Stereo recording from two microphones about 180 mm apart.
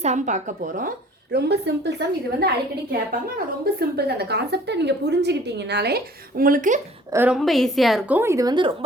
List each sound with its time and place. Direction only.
0.0 s speech: 40° right (ahead or behind)
1.3 s a woman's voice: 65° right (ahead or behind)
3.1 s a woman's voice: 55° right (ahead or behind)
7.1 s a woman's voice: 10° right (ahead or behind)
7.3 s a woman's voice: centre (ahead or behind); by 8.7 s 25° right (ahead or behind)